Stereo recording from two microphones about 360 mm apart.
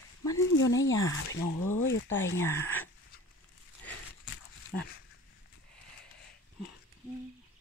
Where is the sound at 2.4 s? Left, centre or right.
Centre.